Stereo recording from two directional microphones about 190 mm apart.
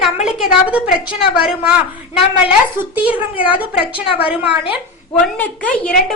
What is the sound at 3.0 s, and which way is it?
Speech, 10° right (ahead or behind).